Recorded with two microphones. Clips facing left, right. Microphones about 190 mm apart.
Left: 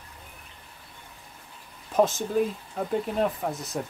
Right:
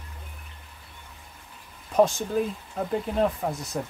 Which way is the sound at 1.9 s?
Centre (ahead or behind).